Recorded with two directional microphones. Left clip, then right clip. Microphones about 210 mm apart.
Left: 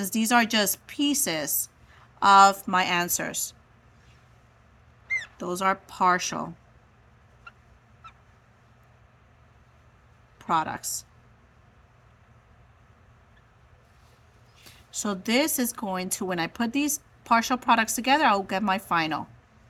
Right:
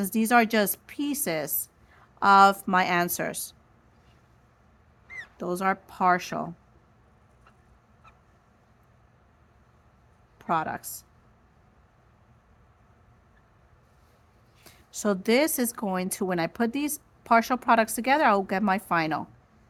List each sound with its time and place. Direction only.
0.0 s a woman's voice: 25° right (ahead or behind)
5.4 s a woman's voice: 25° right (ahead or behind)
10.3 s speech: 25° right (ahead or behind)
14.6 s a woman's voice: 35° right (ahead or behind)